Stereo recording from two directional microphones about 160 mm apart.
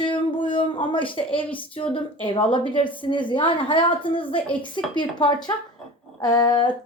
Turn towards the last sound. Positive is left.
turn(degrees=25)  # may be behind; listen again after turning